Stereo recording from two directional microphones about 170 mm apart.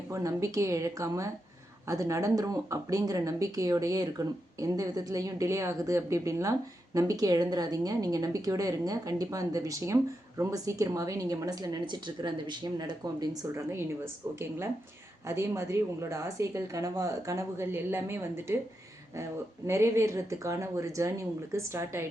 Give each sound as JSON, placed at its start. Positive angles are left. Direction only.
{"t": 0.1, "sound": "a woman's voice", "side_deg": -20}
{"t": 19.6, "sound": "a woman's voice", "side_deg": -15}